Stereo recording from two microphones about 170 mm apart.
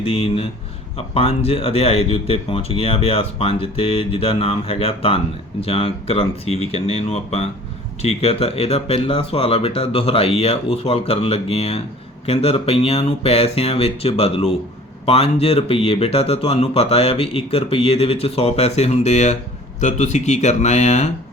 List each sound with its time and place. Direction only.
0.0 s speech: 35° left (ahead or behind)